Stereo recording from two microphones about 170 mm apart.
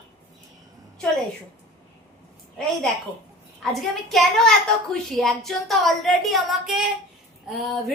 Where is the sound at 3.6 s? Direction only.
Centre (ahead or behind).